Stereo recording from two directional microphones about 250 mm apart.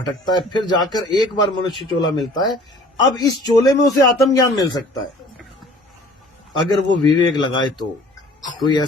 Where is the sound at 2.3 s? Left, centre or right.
Centre.